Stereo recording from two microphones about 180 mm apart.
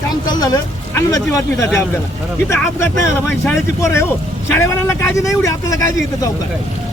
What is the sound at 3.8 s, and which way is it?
Speech, 15° left (ahead or behind).